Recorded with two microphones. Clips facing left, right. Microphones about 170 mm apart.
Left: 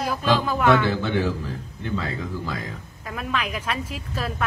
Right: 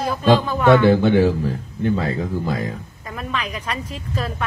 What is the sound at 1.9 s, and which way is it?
Speech, 45° right (ahead or behind).